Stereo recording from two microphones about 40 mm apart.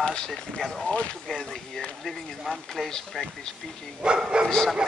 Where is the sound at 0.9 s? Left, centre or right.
Left.